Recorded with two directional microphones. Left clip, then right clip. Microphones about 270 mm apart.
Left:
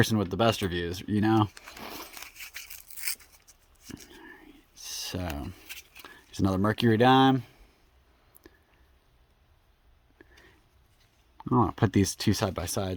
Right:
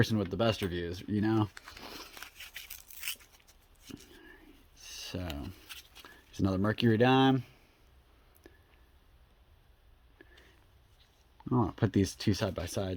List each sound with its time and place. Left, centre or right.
0.0 s speech: left
1.8 s a sound: left
2.1 s toothbrush: centre
4.0 s whispering: left
6.0 s speech: left
8.4 s chewing: centre
10.2 s a sound: centre
11.3 s speech: left